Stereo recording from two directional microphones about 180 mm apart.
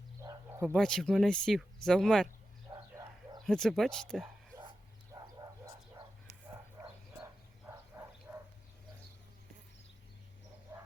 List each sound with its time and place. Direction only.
0.2 s bow-wow: 15° right (ahead or behind)
0.8 s speech: 5° left (ahead or behind)
2.7 s bow-wow: 20° right (ahead or behind)
3.4 s speech: centre (ahead or behind)
7.9 s a sound: 15° right (ahead or behind)
10.7 s frog: 15° right (ahead or behind)